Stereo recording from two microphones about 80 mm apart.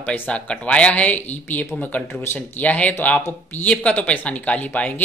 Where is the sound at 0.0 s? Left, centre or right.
Centre.